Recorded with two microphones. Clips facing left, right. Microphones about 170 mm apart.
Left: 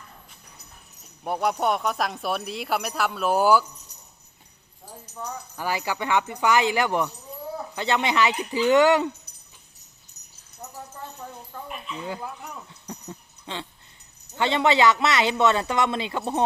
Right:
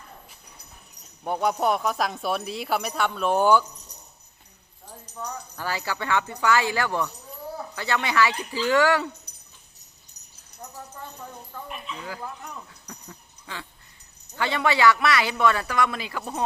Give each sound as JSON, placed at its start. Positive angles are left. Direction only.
{"t": 1.2, "sound": "speech", "side_deg": 5}
{"t": 5.1, "sound": "speech", "side_deg": 10}
{"t": 10.6, "sound": "jingle bell", "side_deg": 5}
{"t": 11.2, "sound": "speech", "side_deg": 5}
{"t": 12.9, "sound": "a sound", "side_deg": 25}
{"t": 14.3, "sound": "speech", "side_deg": 25}